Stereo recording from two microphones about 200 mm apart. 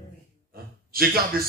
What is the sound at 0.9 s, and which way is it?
Speech, 50° right (ahead or behind).